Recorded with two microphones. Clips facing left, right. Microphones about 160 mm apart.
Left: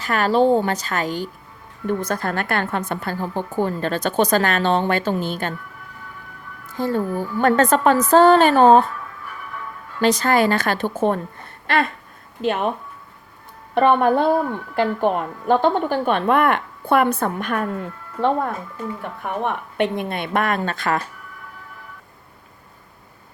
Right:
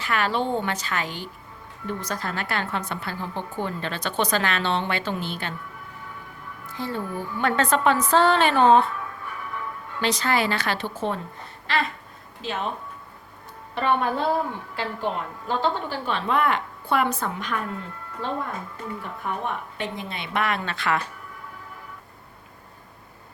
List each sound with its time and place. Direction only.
0.0 s a woman's voice: 40° left (ahead or behind)
1.9 s a woman's voice: 55° left (ahead or behind)
6.7 s a woman's voice: 45° left (ahead or behind)
10.0 s a woman's voice: 45° left (ahead or behind)
11.6 s a sound: 55° left (ahead or behind)
12.4 s a woman's voice: 60° left (ahead or behind)
13.7 s a woman's voice: 55° left (ahead or behind)
19.2 s a woman's voice: 65° left (ahead or behind); by 21.0 s 45° left (ahead or behind)